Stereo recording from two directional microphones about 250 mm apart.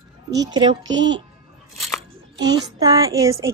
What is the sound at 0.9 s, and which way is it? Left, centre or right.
Speech, right.